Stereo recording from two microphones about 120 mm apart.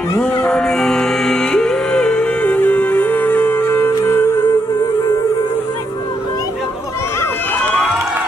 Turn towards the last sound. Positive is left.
turn(degrees=15)  # may be behind; listen again after turning